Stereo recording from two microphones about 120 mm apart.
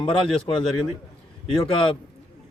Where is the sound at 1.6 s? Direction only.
45° left (ahead or behind).